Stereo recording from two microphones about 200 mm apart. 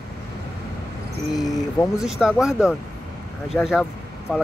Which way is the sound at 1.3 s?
20° left (ahead or behind).